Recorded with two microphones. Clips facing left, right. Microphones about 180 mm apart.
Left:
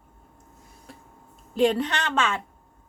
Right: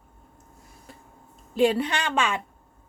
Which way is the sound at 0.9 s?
Centre (ahead or behind).